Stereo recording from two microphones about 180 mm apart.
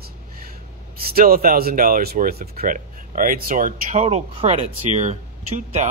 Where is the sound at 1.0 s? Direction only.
55° right (ahead or behind).